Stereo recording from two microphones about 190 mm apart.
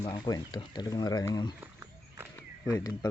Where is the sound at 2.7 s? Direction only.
20° left (ahead or behind).